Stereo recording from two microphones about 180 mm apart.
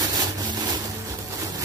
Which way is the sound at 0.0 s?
20° right (ahead or behind).